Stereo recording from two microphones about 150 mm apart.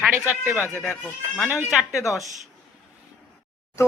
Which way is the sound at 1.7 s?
Centre (ahead or behind).